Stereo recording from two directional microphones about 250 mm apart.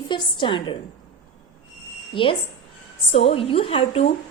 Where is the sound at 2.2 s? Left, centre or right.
Left.